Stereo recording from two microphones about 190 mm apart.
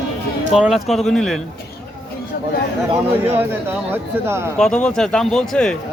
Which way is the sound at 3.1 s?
10° right (ahead or behind).